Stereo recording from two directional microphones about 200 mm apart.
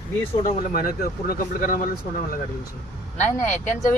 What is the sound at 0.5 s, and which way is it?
Speech, 45° left (ahead or behind).